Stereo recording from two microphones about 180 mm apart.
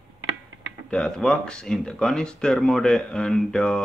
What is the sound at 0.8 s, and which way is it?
Speech, 5° left (ahead or behind).